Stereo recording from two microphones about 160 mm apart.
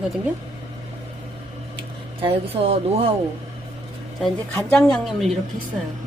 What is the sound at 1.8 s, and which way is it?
Speech, 35° right (ahead or behind).